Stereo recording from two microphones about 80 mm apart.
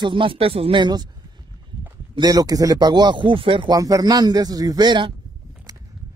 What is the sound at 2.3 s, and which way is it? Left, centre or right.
Speech, right.